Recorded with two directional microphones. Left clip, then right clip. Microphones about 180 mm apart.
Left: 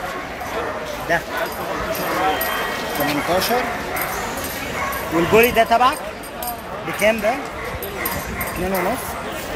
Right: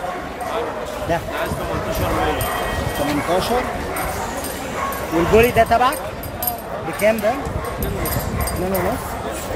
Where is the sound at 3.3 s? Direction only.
5° right (ahead or behind).